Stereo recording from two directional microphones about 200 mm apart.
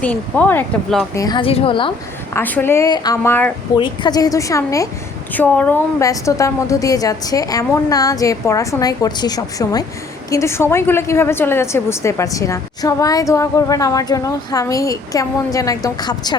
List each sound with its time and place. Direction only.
0.0 s a woman's voice: 10° left (ahead or behind)
1.1 s a woman's voice: 20° left (ahead or behind)
2.3 s a woman's voice: 10° left (ahead or behind)
3.8 s a woman's voice: 25° left (ahead or behind)